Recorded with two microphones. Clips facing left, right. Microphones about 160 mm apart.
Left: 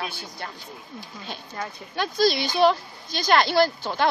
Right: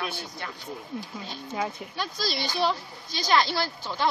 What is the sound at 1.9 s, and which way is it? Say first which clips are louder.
A woman's voice: left 12 dB; 60° left (ahead or behind).